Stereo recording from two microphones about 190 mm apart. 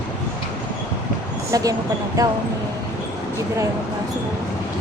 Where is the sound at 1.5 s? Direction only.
20° right (ahead or behind).